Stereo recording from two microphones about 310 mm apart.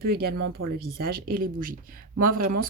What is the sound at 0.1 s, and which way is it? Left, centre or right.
Speech, right.